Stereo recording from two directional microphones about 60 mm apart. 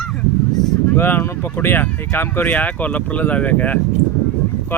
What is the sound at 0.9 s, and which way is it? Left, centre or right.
Speech, left.